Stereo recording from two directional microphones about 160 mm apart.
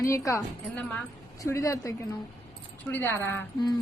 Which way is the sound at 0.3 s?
20° left (ahead or behind).